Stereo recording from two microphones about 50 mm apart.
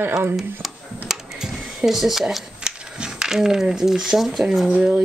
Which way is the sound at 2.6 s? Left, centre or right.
Centre.